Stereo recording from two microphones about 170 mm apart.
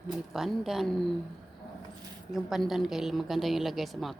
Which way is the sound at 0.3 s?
Centre (ahead or behind).